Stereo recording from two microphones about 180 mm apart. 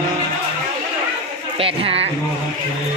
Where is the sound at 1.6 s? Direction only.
30° right (ahead or behind).